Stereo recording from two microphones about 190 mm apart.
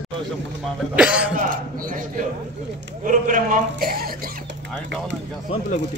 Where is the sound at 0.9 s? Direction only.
5° right (ahead or behind).